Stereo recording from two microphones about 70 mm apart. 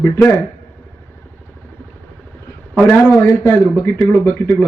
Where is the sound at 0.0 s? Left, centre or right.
Left.